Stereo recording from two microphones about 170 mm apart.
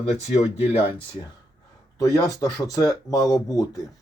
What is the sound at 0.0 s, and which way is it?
Speech, 40° left (ahead or behind).